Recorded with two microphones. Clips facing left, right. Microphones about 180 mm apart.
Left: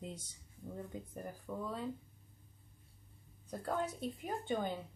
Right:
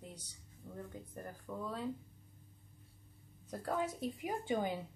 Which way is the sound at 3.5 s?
Centre (ahead or behind).